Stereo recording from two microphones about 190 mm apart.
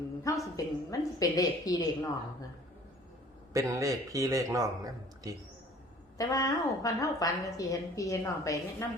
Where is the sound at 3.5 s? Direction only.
15° right (ahead or behind).